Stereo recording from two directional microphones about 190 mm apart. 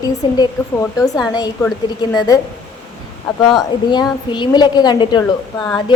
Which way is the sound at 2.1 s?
20° left (ahead or behind).